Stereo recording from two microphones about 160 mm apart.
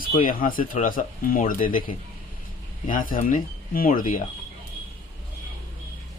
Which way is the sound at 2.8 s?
60° left (ahead or behind).